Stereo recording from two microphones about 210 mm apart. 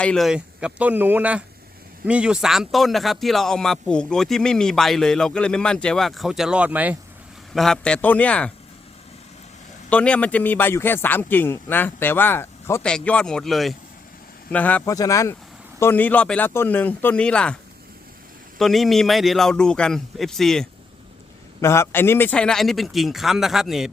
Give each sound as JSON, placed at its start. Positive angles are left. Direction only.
{"t": 0.0, "sound": "speech", "side_deg": 0}
{"t": 9.9, "sound": "a man's voice", "side_deg": 5}
{"t": 18.6, "sound": "speech", "side_deg": 0}
{"t": 21.6, "sound": "speech", "side_deg": 15}